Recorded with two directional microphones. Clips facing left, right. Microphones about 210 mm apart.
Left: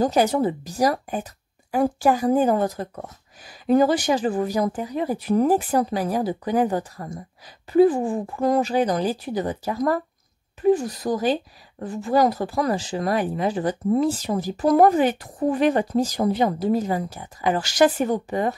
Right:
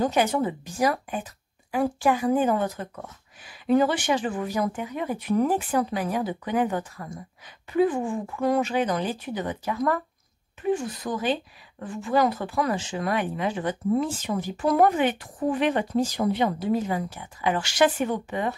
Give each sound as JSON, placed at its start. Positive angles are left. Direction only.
{"t": 0.0, "sound": "speech", "side_deg": 35}